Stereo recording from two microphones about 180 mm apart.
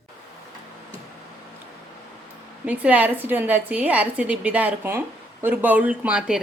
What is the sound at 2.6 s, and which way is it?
Speech, 10° right (ahead or behind).